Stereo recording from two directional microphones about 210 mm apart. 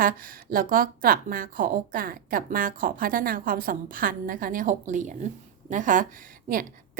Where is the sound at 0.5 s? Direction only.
40° right (ahead or behind).